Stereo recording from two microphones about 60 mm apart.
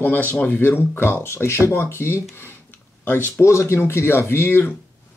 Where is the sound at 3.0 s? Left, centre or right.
Left.